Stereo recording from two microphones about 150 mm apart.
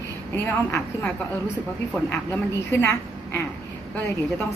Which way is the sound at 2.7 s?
15° left (ahead or behind).